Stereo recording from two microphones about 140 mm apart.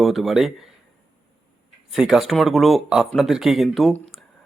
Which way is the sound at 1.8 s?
5° right (ahead or behind).